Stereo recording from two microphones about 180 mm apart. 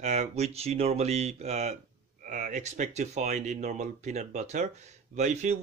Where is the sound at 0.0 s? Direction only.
40° right (ahead or behind).